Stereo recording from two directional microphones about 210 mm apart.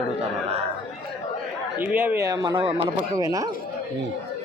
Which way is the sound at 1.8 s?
10° right (ahead or behind).